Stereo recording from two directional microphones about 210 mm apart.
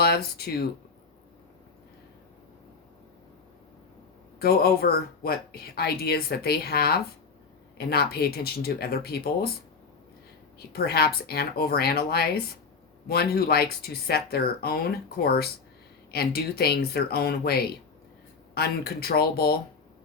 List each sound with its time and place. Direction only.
0.0 s speech: 50° left (ahead or behind)
4.4 s speech: 50° left (ahead or behind)
10.7 s speech: 50° left (ahead or behind)